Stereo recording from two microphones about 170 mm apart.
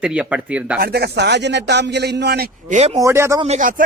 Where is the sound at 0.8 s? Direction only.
70° right (ahead or behind).